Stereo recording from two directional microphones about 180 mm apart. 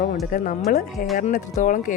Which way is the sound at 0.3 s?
45° left (ahead or behind).